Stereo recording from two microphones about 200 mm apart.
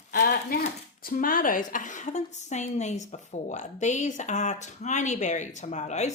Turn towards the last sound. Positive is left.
turn(degrees=35)  # may be behind; listen again after turning